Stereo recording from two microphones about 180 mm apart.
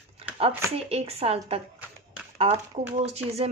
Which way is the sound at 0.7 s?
35° right (ahead or behind).